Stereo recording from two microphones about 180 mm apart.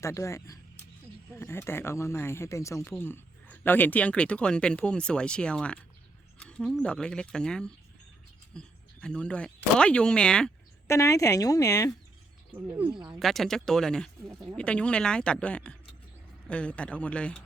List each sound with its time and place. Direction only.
0.0 s speech: 15° left (ahead or behind)
10.8 s speech: 15° left (ahead or behind)
12.5 s speech: 10° right (ahead or behind); by 17.4 s 5° left (ahead or behind)